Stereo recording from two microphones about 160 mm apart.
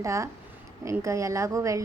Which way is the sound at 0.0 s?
20° right (ahead or behind).